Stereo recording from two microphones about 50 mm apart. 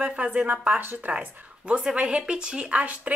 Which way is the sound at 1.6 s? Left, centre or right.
Centre.